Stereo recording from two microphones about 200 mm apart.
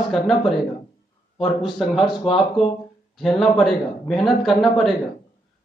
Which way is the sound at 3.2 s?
Centre (ahead or behind).